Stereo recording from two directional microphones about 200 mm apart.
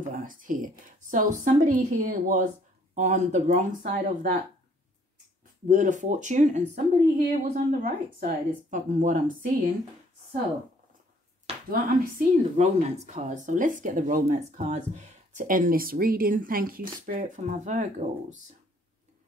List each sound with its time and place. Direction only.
0.1 s speech: 40° right (ahead or behind)
5.7 s speech: 40° right (ahead or behind)
11.7 s speech: 35° right (ahead or behind)